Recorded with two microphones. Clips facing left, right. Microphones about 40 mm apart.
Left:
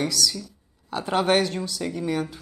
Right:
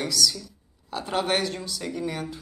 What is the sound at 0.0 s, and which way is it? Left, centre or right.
Speech, centre.